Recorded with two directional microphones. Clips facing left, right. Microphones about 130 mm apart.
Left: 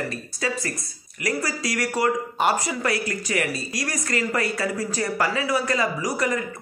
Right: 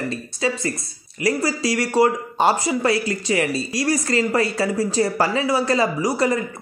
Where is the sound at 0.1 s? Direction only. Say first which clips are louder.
Right 4 dB; 25° right (ahead or behind).